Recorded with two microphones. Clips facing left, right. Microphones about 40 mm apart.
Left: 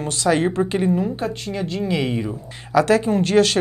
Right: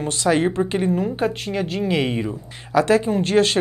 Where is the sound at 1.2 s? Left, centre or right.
Centre.